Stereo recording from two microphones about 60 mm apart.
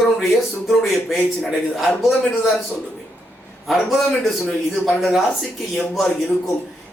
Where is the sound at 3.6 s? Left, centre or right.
Centre.